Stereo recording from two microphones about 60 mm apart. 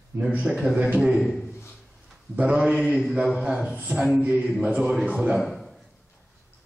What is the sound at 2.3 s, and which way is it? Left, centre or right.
Mantra, right.